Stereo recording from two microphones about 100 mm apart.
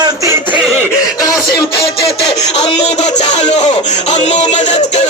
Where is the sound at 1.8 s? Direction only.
85° left.